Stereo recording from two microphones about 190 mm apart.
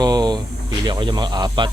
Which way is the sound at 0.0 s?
20° right (ahead or behind).